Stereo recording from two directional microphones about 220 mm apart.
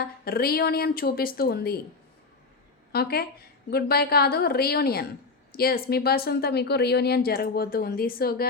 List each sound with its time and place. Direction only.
0.0 s speech: 45° left (ahead or behind)
2.9 s speech: 45° left (ahead or behind)